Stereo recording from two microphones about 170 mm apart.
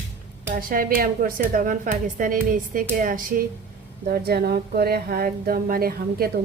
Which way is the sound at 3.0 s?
55° right (ahead or behind).